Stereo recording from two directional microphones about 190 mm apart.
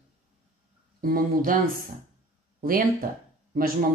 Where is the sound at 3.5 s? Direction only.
50° right (ahead or behind).